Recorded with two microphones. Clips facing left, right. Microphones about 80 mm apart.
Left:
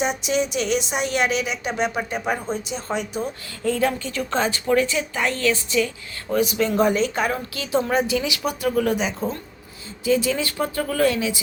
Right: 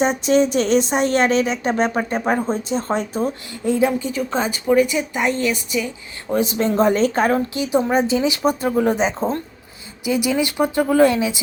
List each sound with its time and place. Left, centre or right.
0.0 s speech: right
3.7 s a woman's voice: centre
6.4 s speech: right
7.5 s speech: centre
10.0 s a woman's voice: centre